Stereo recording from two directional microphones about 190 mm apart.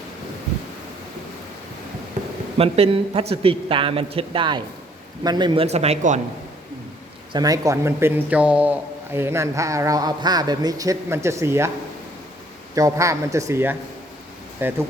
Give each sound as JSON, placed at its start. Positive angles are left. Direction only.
{"t": 2.6, "sound": "a man's voice", "side_deg": -30}
{"t": 7.3, "sound": "a man's voice", "side_deg": -20}
{"t": 12.7, "sound": "a man's voice", "side_deg": -15}